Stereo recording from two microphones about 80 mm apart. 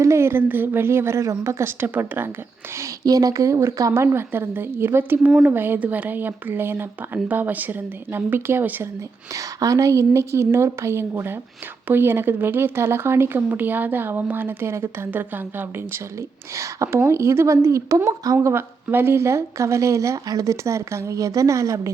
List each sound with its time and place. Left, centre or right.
0.0 s speech: right
3.0 s speech: right
9.3 s speech: right
16.6 s speech: right
18.4 s speech: right